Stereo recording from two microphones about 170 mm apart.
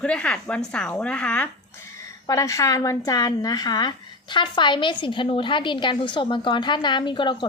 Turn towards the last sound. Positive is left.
turn(degrees=25)  # may be behind; listen again after turning